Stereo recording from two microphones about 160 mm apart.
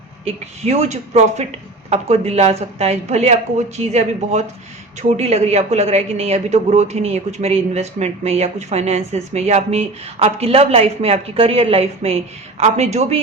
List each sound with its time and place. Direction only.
0.3 s speech: 45° right (ahead or behind)